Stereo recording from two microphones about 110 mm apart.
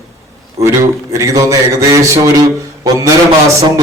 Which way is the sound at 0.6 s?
25° right (ahead or behind).